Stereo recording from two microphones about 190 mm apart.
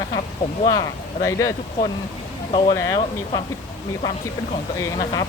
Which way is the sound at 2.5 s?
30° left (ahead or behind).